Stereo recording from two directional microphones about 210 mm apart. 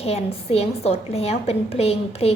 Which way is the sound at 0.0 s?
30° left (ahead or behind).